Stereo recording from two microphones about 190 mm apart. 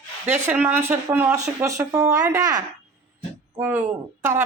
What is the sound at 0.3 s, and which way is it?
Speech, 10° right (ahead or behind).